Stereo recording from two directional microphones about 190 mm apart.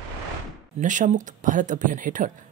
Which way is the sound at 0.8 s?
40° right (ahead or behind).